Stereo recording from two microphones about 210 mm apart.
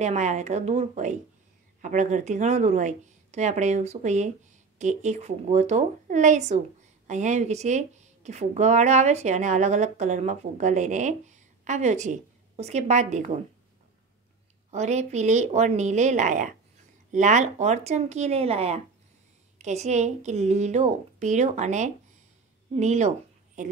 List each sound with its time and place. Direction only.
0.0 s a woman's voice: 35° right (ahead or behind)
14.7 s a woman's voice: 35° right (ahead or behind)